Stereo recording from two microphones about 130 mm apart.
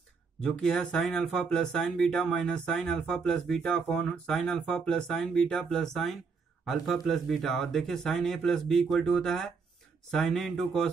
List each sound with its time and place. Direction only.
0.4 s speech: 5° left (ahead or behind)